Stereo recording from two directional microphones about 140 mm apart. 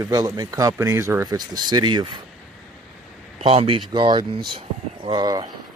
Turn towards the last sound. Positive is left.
turn(degrees=-30)  # may be behind; listen again after turning